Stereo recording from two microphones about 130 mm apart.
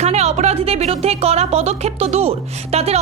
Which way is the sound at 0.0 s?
55° right (ahead or behind).